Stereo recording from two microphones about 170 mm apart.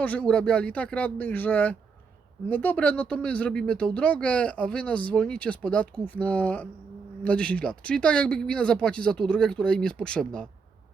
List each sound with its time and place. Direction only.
0.0 s speech: 10° left (ahead or behind)